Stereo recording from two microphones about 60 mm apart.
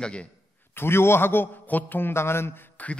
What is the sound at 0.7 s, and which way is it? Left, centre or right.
A man's voice, left.